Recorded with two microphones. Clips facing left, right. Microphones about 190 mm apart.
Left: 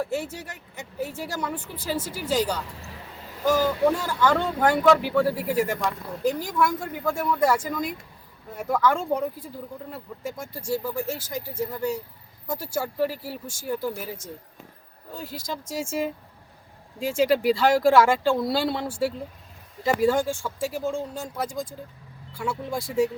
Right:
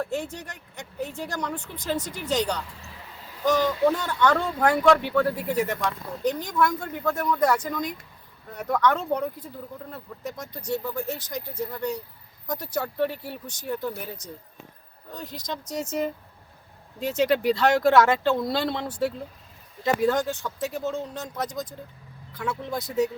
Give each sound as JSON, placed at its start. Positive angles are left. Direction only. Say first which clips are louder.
{"t": 0.0, "sound": "speech", "louder": "left 1 dB", "side_deg": 5}
{"t": 21.5, "sound": "speech", "louder": "left 1 dB", "side_deg": 25}
{"t": 22.4, "sound": "speech", "louder": "left 1 dB", "side_deg": 10}